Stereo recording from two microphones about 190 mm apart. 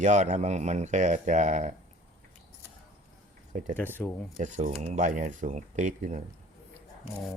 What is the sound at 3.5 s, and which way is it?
Speech, 40° right (ahead or behind).